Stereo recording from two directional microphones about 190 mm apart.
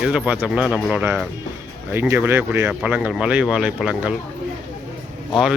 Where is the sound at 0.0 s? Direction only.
5° right (ahead or behind).